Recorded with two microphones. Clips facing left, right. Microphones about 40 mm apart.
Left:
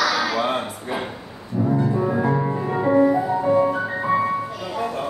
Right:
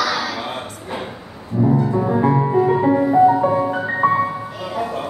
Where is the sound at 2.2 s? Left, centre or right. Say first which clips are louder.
Right 4 dB; right.